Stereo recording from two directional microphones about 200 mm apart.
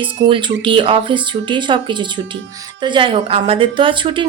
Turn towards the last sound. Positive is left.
turn(degrees=-25)  # may be behind; listen again after turning